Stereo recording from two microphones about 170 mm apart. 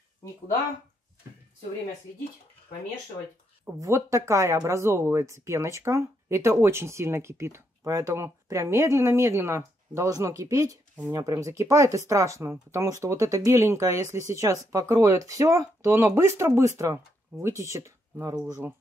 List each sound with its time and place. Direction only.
3.8 s speech: 15° right (ahead or behind)